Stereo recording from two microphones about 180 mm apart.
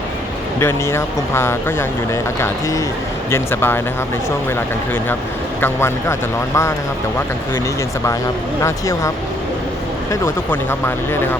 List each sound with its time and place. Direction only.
0.6 s speech: 15° left (ahead or behind)
5.5 s speech: 15° left (ahead or behind)
8.6 s speech: 15° left (ahead or behind)